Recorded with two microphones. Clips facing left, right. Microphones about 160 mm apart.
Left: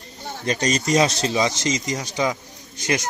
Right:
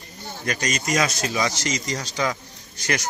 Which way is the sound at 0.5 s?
30° left (ahead or behind).